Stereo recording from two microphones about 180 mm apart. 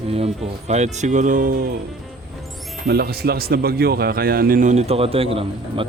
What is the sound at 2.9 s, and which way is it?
A man's voice, 60° right (ahead or behind).